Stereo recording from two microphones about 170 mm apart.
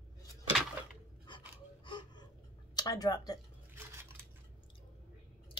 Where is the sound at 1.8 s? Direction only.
30° left (ahead or behind).